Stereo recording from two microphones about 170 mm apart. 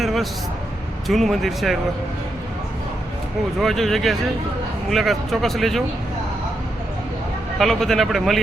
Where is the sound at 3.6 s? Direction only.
Centre (ahead or behind).